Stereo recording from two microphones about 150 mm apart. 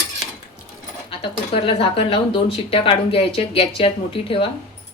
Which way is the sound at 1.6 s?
40° left (ahead or behind).